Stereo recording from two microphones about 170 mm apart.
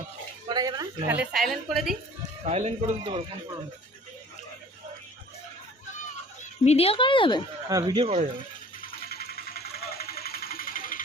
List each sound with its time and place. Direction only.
0.4 s speech: 25° right (ahead or behind)
1.1 s a woman's voice: 5° right (ahead or behind)
2.4 s speech: 40° right (ahead or behind)
6.7 s speech: 35° left (ahead or behind)
7.7 s speech: 20° right (ahead or behind)
8.0 s speech: 45° right (ahead or behind)
8.9 s music: 60° left (ahead or behind)
10.0 s a sound: 65° left (ahead or behind)